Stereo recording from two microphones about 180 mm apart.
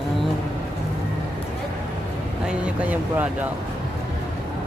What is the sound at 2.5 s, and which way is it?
Speech, 5° right (ahead or behind).